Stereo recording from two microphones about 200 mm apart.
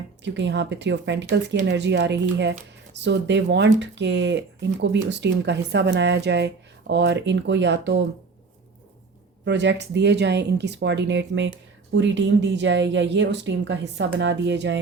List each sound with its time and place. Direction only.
0.2 s speech: 60° right (ahead or behind)
9.4 s speech: 60° right (ahead or behind)